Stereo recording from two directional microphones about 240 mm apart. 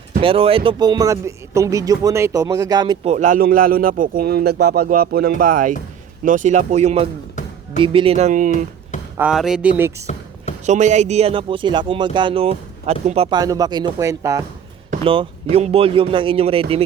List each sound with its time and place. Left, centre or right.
0.2 s speech: right
9.1 s speech: centre
10.7 s speech: right